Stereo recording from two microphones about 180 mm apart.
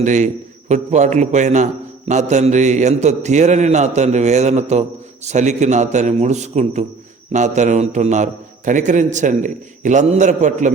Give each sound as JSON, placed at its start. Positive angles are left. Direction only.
{"t": 0.0, "sound": "a man's voice", "side_deg": -45}